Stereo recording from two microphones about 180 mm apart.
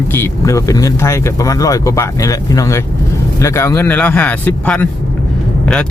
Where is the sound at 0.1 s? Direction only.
15° left (ahead or behind).